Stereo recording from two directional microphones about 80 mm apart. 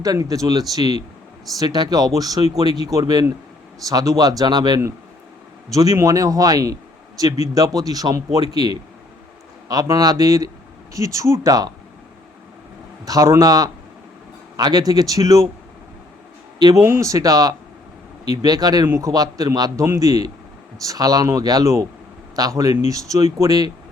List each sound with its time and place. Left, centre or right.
0.0 s a man's voice: right
5.7 s a man's voice: right
13.1 s a man's voice: right
16.6 s speech: right
16.8 s a man's voice: right